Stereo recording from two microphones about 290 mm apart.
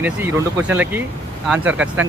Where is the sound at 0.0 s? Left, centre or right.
Centre.